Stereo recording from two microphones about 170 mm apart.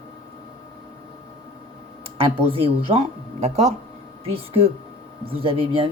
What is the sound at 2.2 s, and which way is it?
Speech, 30° right (ahead or behind).